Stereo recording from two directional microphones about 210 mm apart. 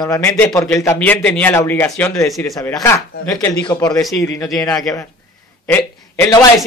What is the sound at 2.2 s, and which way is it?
Speech, centre (ahead or behind).